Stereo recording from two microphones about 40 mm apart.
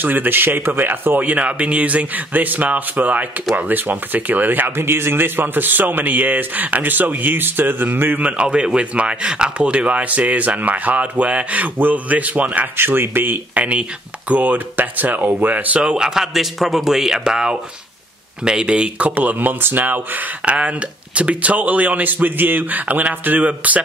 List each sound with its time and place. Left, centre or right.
0.0 s speech: right
1.3 s speech: right
8.3 s speech: right
12.7 s speech: right
13.6 s speech: right
16.0 s speech: centre
19.0 s speech: right
20.4 s speech: right